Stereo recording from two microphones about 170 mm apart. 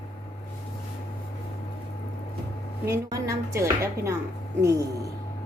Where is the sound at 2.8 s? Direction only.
15° right (ahead or behind).